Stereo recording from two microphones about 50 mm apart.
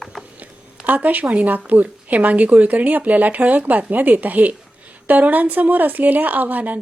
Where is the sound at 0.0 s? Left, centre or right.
Centre.